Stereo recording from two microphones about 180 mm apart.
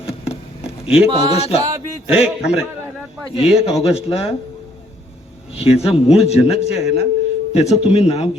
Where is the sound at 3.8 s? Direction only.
35° left (ahead or behind).